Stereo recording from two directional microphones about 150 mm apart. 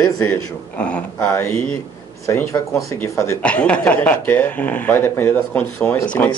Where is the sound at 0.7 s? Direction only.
5° left (ahead or behind).